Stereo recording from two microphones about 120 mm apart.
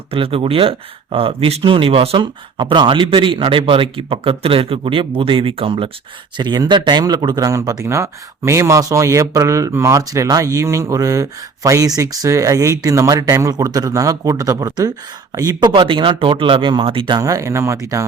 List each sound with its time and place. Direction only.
0.1 s speech: 50° right (ahead or behind)
6.3 s speech: 35° right (ahead or behind)
15.7 s speech: 45° right (ahead or behind)
17.2 s speech: 30° right (ahead or behind)